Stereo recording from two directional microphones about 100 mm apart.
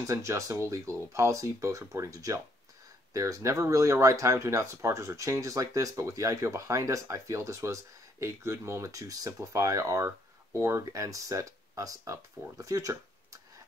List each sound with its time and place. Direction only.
0.0 s speech: 30° right (ahead or behind)